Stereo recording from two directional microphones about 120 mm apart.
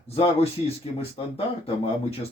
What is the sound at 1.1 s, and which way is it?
Speech, 55° left (ahead or behind).